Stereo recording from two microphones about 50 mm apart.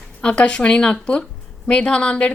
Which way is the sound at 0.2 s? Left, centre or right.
Left.